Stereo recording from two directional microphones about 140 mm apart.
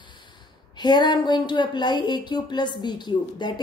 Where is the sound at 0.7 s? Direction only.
30° left (ahead or behind).